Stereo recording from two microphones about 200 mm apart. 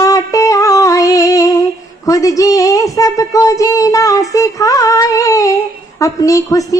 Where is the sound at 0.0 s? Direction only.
15° left (ahead or behind).